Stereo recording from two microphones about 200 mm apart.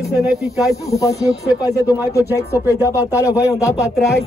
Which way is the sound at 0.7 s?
15° left (ahead or behind).